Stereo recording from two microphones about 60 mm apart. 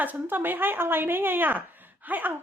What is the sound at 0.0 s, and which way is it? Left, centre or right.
Speech, right.